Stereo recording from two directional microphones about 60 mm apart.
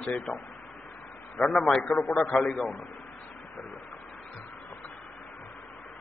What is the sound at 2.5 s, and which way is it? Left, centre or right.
Speech, centre.